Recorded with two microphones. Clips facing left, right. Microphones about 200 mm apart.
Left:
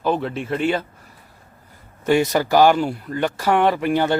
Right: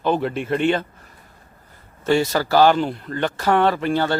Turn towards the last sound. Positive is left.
turn(degrees=15)  # may be behind; listen again after turning